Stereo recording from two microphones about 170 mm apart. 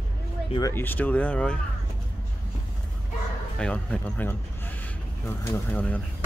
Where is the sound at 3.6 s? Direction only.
5° left (ahead or behind).